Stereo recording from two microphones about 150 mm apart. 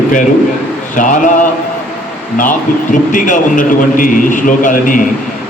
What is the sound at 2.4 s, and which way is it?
A man's voice, 60° left (ahead or behind).